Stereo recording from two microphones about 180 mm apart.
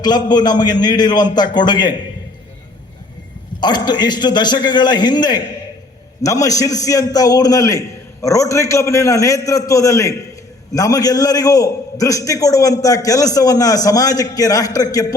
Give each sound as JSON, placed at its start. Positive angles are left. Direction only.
{"t": 0.0, "sound": "a man's voice", "side_deg": 25}
{"t": 3.6, "sound": "a man's voice", "side_deg": 25}